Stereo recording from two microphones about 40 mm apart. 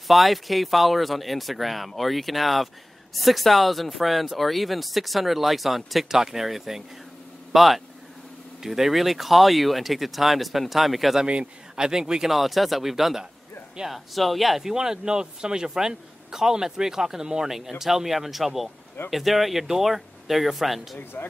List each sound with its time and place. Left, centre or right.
0.1 s speech: centre
11.7 s speech: centre
12.3 s speech: centre
14.7 s speech: centre